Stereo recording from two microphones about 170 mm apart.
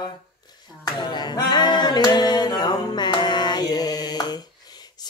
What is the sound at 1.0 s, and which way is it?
Music, 25° left (ahead or behind).